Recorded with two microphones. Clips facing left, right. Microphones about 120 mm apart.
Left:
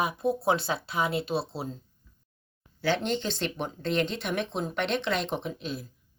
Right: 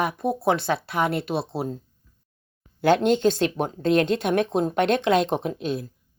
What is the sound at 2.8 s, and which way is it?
Speech, 50° right (ahead or behind).